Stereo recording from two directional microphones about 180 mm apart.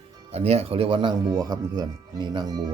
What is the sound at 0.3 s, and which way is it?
Speech, 35° right (ahead or behind).